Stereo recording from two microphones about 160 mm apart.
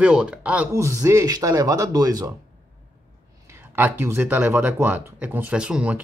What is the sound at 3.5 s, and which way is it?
Speech, 10° right (ahead or behind).